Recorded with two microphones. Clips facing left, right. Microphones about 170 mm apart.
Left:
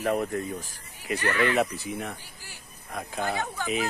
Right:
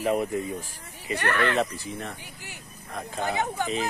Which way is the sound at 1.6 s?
10° left (ahead or behind).